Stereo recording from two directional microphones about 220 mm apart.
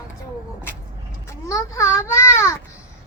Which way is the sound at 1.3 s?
15° left (ahead or behind).